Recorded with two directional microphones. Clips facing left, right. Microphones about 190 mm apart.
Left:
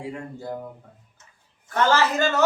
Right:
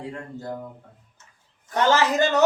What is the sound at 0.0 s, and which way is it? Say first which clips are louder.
Speech: left 1 dB; 10° left (ahead or behind).